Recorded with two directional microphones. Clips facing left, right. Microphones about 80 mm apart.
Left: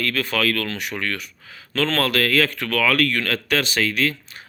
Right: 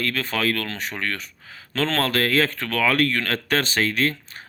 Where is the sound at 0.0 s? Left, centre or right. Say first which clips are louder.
Left 2 dB; right.